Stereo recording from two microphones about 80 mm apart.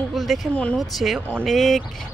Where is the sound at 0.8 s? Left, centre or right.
Centre.